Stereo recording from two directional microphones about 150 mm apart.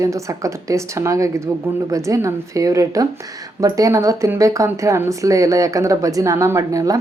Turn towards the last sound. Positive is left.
turn(degrees=-20)  # may be behind; listen again after turning